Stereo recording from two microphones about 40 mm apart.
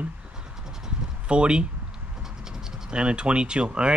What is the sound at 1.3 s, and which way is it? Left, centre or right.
Speech, right.